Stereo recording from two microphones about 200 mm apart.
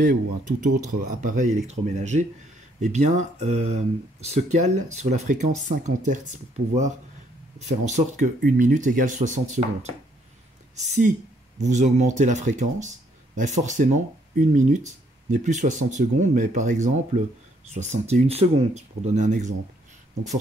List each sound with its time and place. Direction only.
0.0 s speech: 40° right (ahead or behind)
7.8 s speech: 35° right (ahead or behind)